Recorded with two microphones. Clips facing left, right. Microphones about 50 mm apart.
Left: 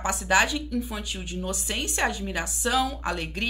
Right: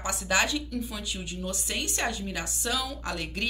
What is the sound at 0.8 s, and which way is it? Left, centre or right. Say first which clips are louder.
A woman's voice: left 2 dB; centre.